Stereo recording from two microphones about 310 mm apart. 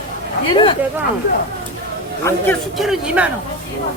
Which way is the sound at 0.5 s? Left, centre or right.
Centre.